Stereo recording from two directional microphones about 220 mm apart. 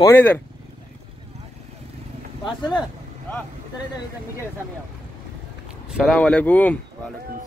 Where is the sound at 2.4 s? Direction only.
20° left (ahead or behind).